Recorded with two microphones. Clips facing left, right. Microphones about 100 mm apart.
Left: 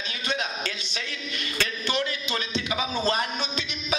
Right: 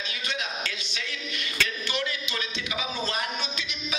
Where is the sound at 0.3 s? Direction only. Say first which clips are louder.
Left 4 dB; 35° left (ahead or behind).